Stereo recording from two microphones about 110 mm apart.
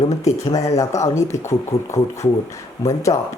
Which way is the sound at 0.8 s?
30° left (ahead or behind).